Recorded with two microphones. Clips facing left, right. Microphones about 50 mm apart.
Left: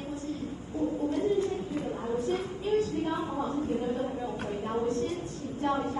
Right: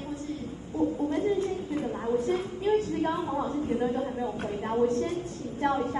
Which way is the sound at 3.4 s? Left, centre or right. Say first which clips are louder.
Right 2 dB; right.